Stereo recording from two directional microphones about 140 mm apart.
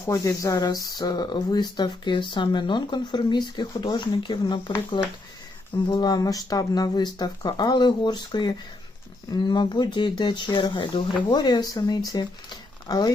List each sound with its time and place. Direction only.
0.0 s speech: 20° left (ahead or behind)